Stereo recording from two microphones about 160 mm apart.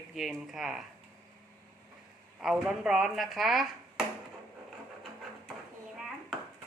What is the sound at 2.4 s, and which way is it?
Speech, centre (ahead or behind).